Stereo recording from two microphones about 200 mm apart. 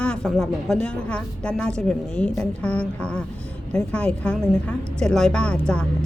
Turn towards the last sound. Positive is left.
turn(degrees=5)  # may be behind; listen again after turning